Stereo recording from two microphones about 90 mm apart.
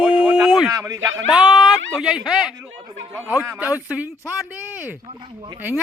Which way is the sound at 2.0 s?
5° right (ahead or behind).